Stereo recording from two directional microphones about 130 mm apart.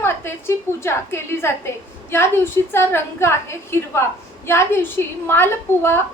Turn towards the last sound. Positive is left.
turn(degrees=15)  # may be behind; listen again after turning